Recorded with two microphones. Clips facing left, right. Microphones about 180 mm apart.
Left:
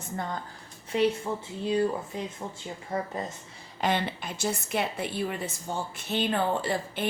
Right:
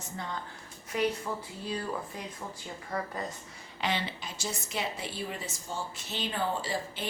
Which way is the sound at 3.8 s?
50° left (ahead or behind).